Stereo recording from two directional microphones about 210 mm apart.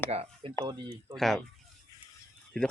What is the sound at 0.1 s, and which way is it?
Speech, 30° right (ahead or behind).